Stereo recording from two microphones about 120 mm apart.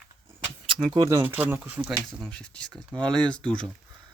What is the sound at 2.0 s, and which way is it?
Speech, 5° left (ahead or behind).